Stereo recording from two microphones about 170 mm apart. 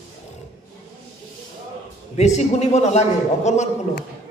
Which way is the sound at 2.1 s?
40° left (ahead or behind).